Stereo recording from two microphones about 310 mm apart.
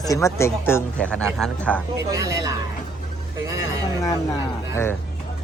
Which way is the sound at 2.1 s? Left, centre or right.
Centre.